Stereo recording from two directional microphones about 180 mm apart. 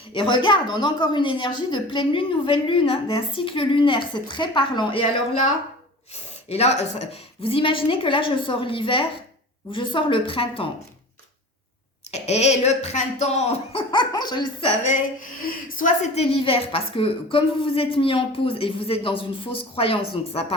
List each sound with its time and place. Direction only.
0.1 s a woman's voice: 25° left (ahead or behind)
6.5 s a woman's voice: 35° left (ahead or behind)
12.1 s a woman's voice: 40° left (ahead or behind)
15.4 s a woman's voice: 45° left (ahead or behind)